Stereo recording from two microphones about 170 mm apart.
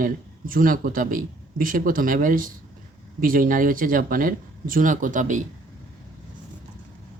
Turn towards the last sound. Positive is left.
turn(degrees=-50)  # may be behind; listen again after turning